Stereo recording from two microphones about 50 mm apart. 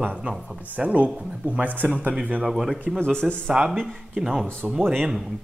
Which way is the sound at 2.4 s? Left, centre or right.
Centre.